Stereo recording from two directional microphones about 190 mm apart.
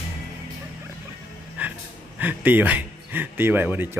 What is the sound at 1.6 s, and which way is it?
Music, 10° right (ahead or behind).